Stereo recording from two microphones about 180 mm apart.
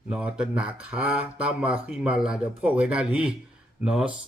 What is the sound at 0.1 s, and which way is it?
Speech, 5° right (ahead or behind).